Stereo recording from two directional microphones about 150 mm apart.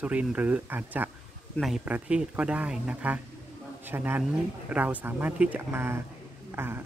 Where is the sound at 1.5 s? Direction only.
Centre (ahead or behind).